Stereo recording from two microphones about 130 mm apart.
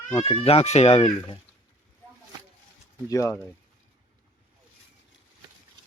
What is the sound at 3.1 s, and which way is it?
Speech, 25° left (ahead or behind).